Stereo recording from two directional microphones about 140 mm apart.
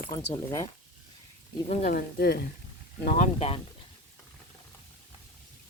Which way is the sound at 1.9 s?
90° left.